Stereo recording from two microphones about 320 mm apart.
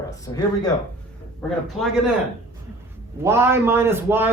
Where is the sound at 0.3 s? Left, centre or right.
Centre.